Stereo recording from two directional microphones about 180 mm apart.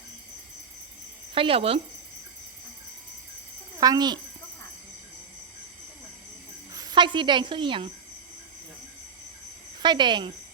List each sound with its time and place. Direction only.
1.3 s speech: 30° right (ahead or behind)
3.8 s a child's voice: 20° right (ahead or behind)
6.7 s speech: 25° right (ahead or behind)
9.8 s speech: 25° right (ahead or behind)